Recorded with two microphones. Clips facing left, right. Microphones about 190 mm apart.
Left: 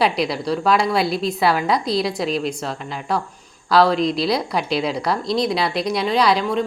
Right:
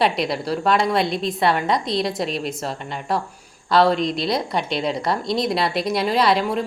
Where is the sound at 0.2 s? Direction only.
Centre (ahead or behind).